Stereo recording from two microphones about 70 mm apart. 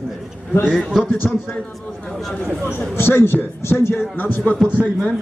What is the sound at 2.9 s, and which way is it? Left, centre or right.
A man's voice, left.